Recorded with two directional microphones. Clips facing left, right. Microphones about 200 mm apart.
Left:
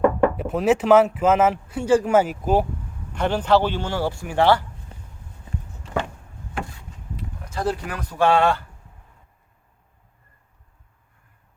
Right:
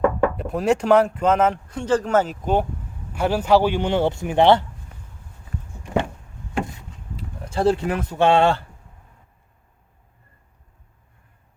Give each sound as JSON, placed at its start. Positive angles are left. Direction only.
{"t": 0.3, "sound": "speech", "side_deg": 0}
{"t": 3.2, "sound": "a man's voice", "side_deg": -10}
{"t": 4.9, "sound": "walk", "side_deg": 30}
{"t": 5.8, "sound": "a sound", "side_deg": -20}
{"t": 7.2, "sound": "speech", "side_deg": -30}